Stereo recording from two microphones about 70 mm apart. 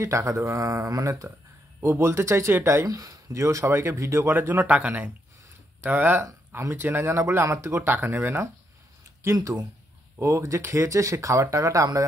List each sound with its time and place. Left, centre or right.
0.0 s speech: right
1.8 s speech: right
2.9 s speech: right
4.3 s speech: right
9.2 s speech: right